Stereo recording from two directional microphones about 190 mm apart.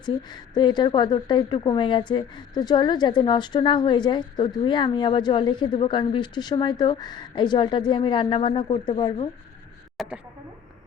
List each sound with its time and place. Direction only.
0.0 s a woman's voice: 20° left (ahead or behind)
10.0 s speech: centre (ahead or behind)